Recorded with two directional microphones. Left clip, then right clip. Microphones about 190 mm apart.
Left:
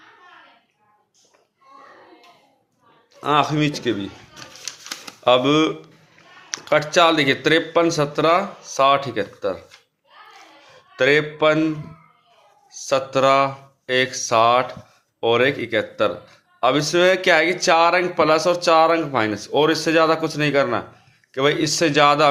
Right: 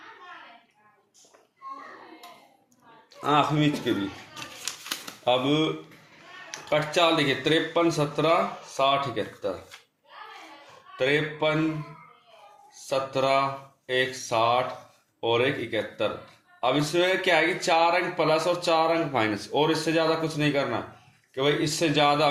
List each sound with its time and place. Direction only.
3.2 s speech: 25° left (ahead or behind)
5.2 s speech: 40° left (ahead or behind)
10.9 s speech: 45° left (ahead or behind)
12.9 s speech: 45° left (ahead or behind)